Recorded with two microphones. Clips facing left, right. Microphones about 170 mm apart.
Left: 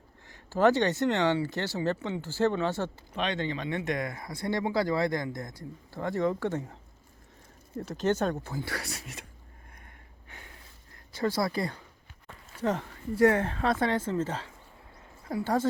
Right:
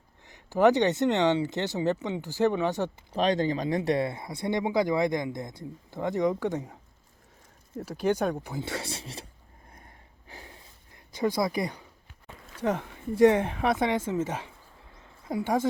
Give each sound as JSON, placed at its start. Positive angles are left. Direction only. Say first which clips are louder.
{"t": 0.3, "sound": "speech", "louder": "right 2 dB", "side_deg": -15}
{"t": 3.1, "sound": "speech", "louder": "right 8 dB", "side_deg": -40}
{"t": 7.8, "sound": "speech", "louder": "right 1 dB", "side_deg": -10}
{"t": 9.7, "sound": "a sound", "louder": "right 1 dB", "side_deg": -35}
{"t": 11.1, "sound": "speech", "louder": "right 2 dB", "side_deg": -15}